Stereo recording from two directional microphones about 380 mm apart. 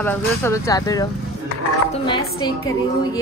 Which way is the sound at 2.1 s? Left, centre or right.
Centre.